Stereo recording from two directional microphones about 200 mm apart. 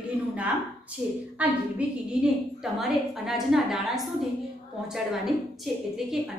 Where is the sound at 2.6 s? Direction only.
Centre (ahead or behind).